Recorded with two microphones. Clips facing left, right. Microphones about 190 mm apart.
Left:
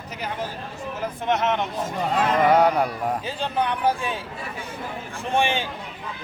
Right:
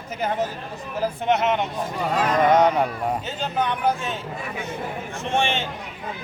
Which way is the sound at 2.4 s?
5° left (ahead or behind).